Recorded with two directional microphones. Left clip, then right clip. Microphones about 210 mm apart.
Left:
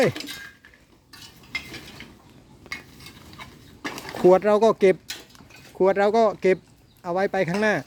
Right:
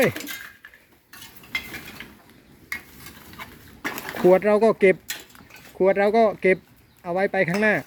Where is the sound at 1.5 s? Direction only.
5° left (ahead or behind).